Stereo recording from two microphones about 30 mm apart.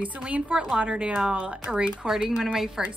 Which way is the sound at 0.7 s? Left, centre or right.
Right.